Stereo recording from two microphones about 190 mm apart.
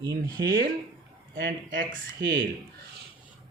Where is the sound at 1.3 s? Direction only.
75° right (ahead or behind).